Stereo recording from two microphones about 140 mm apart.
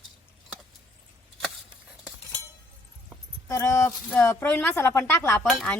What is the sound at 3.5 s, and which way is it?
A woman's voice, 20° left (ahead or behind).